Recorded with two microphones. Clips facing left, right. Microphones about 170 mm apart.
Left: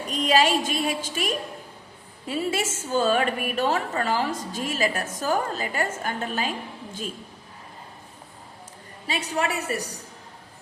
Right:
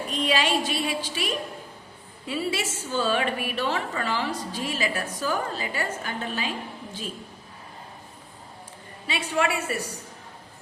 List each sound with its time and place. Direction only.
0.1 s a woman's voice: 45° left (ahead or behind)
9.0 s a woman's voice: 40° left (ahead or behind)